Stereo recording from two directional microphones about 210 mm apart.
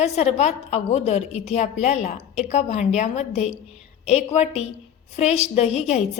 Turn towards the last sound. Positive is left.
turn(degrees=30)  # may be behind; listen again after turning